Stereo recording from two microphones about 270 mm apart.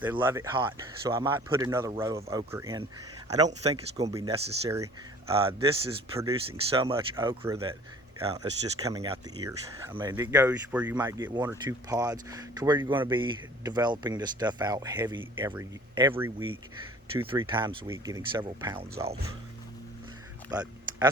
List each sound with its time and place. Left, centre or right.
0.0 s speech: centre; by 4.1 s right
4.1 s speech: centre
8.8 s speech: centre
20.5 s a sound: centre